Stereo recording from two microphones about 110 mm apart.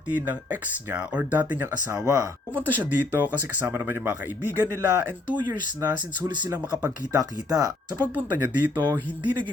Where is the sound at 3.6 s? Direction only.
20° right (ahead or behind).